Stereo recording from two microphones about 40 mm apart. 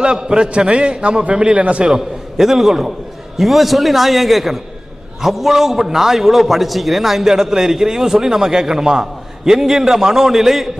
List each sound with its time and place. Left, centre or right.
0.0 s a man's voice: right
1.9 s a man's voice: centre